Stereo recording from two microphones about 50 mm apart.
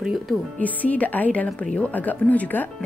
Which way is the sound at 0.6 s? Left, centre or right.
Left.